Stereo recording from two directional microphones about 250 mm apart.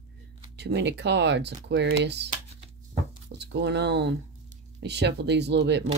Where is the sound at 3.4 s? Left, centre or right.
Right.